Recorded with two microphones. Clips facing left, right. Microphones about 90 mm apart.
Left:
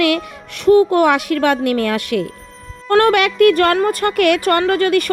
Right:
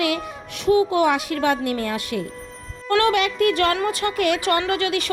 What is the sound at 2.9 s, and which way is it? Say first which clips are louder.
Speech: left 6 dB; 45° left (ahead or behind).